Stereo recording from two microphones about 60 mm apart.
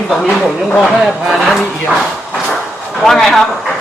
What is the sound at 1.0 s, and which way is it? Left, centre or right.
Speech, centre.